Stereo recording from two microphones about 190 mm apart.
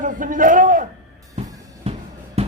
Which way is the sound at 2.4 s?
35° right (ahead or behind).